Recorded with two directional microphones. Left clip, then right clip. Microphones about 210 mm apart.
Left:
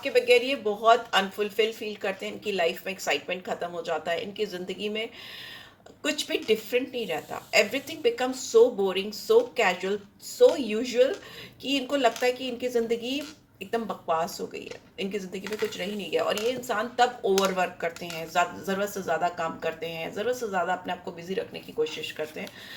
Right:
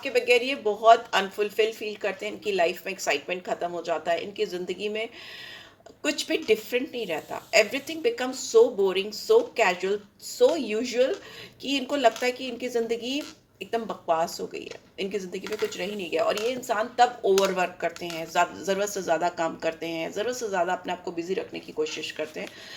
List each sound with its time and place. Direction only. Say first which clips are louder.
0.0 s speech: left 1 dB; 35° right (ahead or behind)